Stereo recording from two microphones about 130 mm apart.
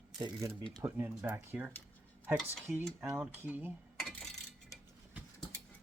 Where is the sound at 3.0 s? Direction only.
10° right (ahead or behind).